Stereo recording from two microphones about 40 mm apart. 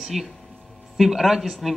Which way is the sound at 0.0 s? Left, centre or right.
Centre.